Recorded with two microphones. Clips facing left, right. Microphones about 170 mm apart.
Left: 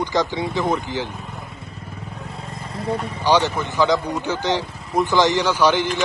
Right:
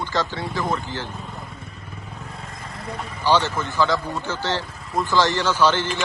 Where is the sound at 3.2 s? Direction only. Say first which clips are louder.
Left 2 dB; 15° left (ahead or behind).